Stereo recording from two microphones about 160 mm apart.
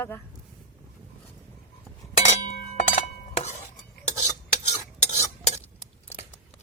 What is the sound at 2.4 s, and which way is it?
Music, 50° left (ahead or behind).